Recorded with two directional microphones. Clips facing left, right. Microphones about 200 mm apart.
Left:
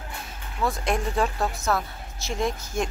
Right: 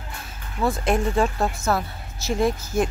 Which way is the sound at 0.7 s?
Centre (ahead or behind).